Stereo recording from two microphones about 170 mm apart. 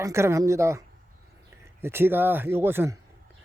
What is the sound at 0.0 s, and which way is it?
Speech, 15° right (ahead or behind).